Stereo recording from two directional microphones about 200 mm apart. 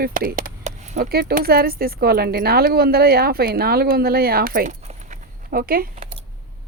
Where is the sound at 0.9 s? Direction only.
50° right (ahead or behind).